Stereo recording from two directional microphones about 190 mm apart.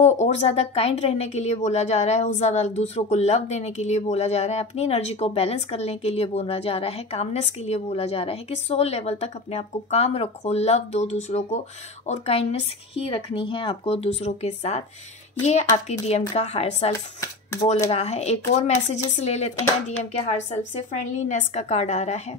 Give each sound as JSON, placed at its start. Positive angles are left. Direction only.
{"t": 0.0, "sound": "speech", "side_deg": 40}